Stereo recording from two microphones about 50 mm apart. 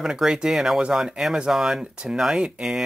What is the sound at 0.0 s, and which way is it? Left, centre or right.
Speech, centre.